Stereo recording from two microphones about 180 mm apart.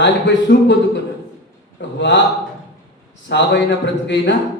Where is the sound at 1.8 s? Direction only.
80° left.